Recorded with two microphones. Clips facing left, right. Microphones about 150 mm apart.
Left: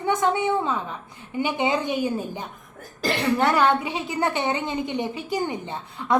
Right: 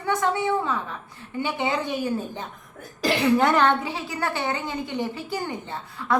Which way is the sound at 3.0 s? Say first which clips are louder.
Right 2 dB; centre (ahead or behind).